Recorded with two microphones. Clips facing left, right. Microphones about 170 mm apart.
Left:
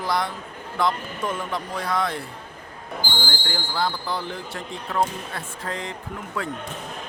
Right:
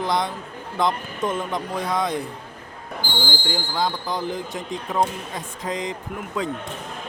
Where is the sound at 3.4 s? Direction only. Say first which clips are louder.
Right 1 dB; 15° right (ahead or behind).